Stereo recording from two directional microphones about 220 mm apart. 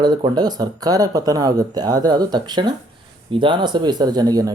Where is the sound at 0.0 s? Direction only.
20° right (ahead or behind).